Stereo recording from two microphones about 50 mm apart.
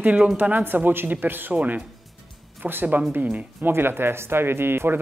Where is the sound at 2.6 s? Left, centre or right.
Right.